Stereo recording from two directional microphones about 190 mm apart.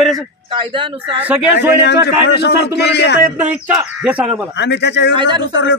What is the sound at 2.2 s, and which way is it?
Speech, 60° left (ahead or behind).